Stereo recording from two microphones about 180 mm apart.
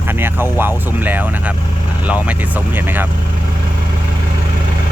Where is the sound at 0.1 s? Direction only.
10° right (ahead or behind).